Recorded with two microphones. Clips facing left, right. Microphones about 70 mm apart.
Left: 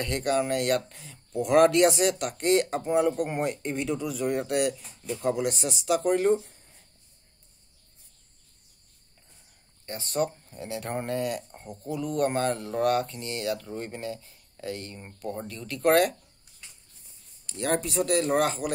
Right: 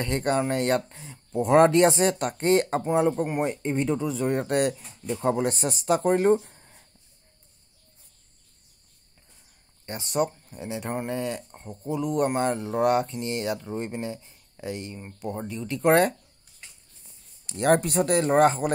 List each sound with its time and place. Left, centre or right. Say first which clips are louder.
0.0 s speech: right 1 dB; right
4.3 s speech: right 1 dB; right
6.4 s a sound: right 3 dB; right
9.8 s speech: right 2 dB; centre
11.2 s speech: even; centre
11.6 s speech: right 6 dB; centre
17.6 s speech: right 6 dB; right
18.2 s speech: right 5 dB; right